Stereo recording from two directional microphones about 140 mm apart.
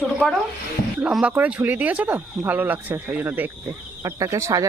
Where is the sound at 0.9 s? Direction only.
5° right (ahead or behind).